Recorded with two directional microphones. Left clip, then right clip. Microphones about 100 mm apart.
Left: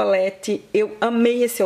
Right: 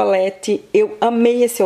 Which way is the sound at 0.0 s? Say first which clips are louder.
Right 3 dB; 15° right (ahead or behind).